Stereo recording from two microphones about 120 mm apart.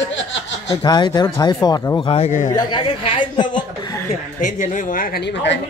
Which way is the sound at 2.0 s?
65° left (ahead or behind).